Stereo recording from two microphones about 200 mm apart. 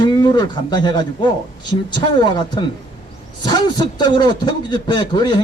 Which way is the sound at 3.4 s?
20° left (ahead or behind).